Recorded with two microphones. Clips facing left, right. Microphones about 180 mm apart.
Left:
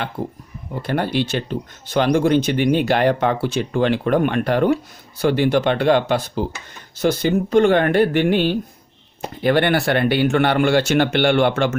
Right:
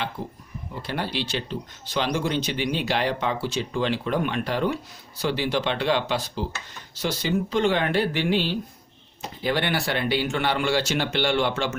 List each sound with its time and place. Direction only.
0.8 s speech: 55° left (ahead or behind)